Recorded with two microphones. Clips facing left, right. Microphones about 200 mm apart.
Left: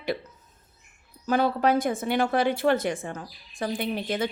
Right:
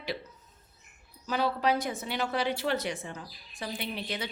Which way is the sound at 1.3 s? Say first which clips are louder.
Left 5 dB; 50° left (ahead or behind).